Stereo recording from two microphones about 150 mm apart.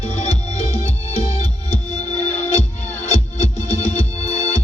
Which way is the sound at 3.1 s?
50° left (ahead or behind).